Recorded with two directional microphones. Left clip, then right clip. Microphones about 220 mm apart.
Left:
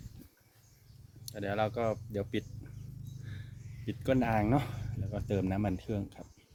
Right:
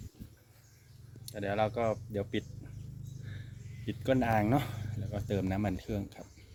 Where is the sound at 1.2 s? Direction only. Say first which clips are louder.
Right 1 dB; centre (ahead or behind).